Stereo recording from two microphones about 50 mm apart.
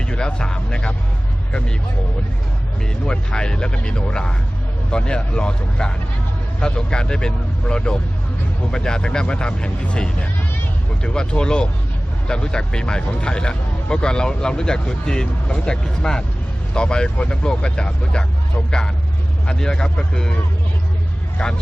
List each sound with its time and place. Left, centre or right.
0.0 s speech: centre
3.1 s speech: centre
19.5 s speech: centre
21.4 s speech: centre